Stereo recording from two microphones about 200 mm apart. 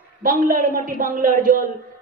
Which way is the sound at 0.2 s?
45° right (ahead or behind).